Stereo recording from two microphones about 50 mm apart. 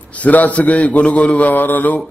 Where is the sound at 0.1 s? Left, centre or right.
Left.